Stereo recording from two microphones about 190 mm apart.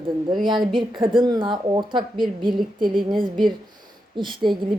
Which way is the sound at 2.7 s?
50° right (ahead or behind).